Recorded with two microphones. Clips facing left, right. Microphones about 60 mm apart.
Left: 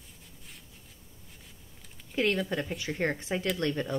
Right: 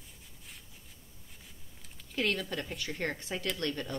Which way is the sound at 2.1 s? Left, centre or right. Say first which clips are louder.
Left 4 dB; centre.